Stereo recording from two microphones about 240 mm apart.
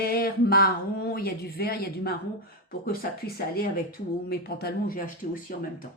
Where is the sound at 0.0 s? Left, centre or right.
Left.